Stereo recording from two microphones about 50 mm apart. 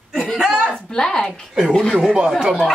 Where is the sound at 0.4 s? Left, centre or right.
Centre.